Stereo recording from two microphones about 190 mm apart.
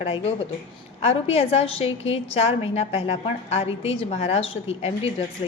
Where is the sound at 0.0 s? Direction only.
30° left (ahead or behind).